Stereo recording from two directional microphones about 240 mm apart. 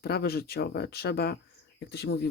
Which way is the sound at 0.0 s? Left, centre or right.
Left.